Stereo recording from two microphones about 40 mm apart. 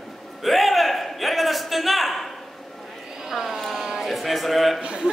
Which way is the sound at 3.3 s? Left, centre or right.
Centre.